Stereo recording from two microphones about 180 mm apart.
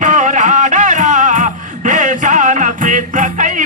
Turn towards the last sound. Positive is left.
turn(degrees=-45)  # may be behind; listen again after turning